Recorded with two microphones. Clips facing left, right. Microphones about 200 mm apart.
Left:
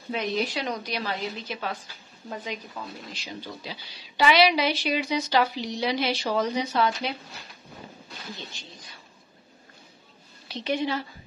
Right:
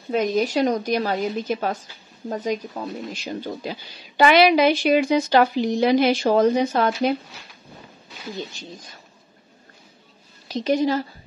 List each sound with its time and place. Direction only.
0.1 s speech: 45° right (ahead or behind)
8.4 s speech: 45° right (ahead or behind)
10.5 s a woman's voice: 40° right (ahead or behind)